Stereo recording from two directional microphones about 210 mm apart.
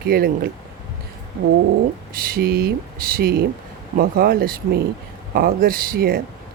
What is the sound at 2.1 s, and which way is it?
Speech, 45° right (ahead or behind).